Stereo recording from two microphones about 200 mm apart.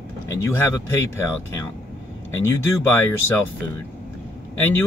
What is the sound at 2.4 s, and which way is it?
Speech, 10° left (ahead or behind).